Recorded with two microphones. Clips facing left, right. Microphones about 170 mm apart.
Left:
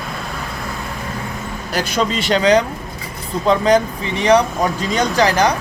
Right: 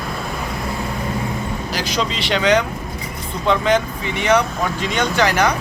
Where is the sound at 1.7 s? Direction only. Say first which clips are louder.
Left 5 dB; 50° left (ahead or behind); by 5.5 s 35° left (ahead or behind).